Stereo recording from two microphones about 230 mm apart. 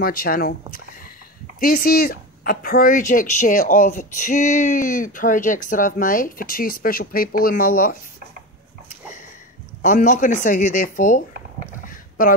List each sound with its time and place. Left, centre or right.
0.0 s speech: left
9.8 s speech: left
11.9 s a sound: left